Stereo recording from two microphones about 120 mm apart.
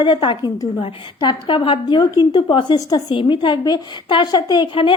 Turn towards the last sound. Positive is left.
turn(degrees=45)  # may be behind; listen again after turning